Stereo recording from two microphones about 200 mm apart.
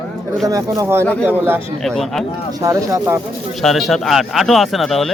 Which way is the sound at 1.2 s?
10° right (ahead or behind).